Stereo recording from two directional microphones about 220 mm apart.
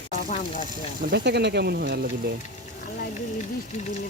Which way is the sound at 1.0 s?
50° right (ahead or behind).